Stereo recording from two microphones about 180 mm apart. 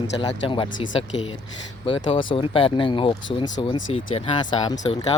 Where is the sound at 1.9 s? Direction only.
30° left (ahead or behind).